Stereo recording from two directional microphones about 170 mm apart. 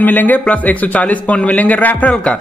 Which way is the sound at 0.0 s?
10° left (ahead or behind).